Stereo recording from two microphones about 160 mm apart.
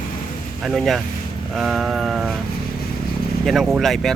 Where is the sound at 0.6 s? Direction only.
Centre (ahead or behind).